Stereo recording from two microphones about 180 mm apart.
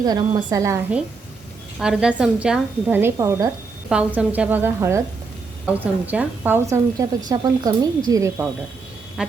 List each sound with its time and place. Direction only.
0.0 s a woman's voice: 20° right (ahead or behind)
1.8 s a woman's voice: 5° right (ahead or behind)
3.8 s a woman's voice: 5° right (ahead or behind)
9.2 s quack: 5° right (ahead or behind)